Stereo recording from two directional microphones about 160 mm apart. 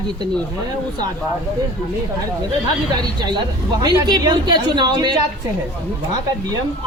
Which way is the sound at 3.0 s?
25° right (ahead or behind).